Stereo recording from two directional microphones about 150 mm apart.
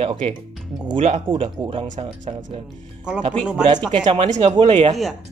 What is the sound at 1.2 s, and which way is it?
Speech, 35° right (ahead or behind).